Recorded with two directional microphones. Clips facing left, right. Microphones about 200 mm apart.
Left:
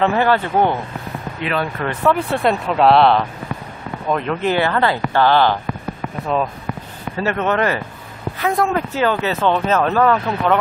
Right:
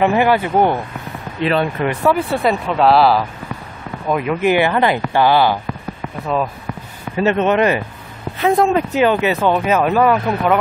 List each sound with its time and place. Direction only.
0.0 s speech: 15° right (ahead or behind)
1.4 s speech: 30° right (ahead or behind)
1.9 s speech: 5° right (ahead or behind)
7.2 s speech: 20° right (ahead or behind)